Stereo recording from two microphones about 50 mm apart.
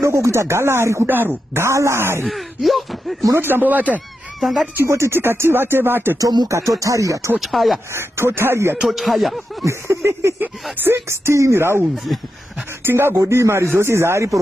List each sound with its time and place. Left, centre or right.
0.0 s speech: right
1.0 s speech: right
1.5 s speech: right
2.2 s speech: centre
3.3 s speech: right
4.7 s speech: right
6.5 s speech: right
7.3 s speech: centre
7.9 s speech: right
8.8 s speech: centre
9.7 s speech: right
10.8 s speech: right
11.9 s speech: centre
12.8 s speech: right